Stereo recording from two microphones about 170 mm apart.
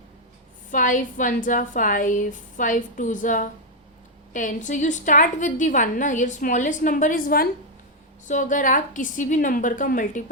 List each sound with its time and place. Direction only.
0.7 s a woman's voice: 50° left (ahead or behind)